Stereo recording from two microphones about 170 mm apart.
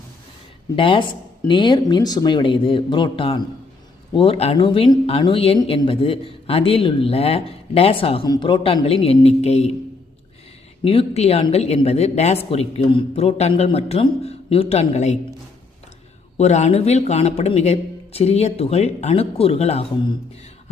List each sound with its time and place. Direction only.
0.8 s speech: 30° left (ahead or behind)
10.8 s speech: 35° left (ahead or behind)
16.4 s speech: 40° left (ahead or behind)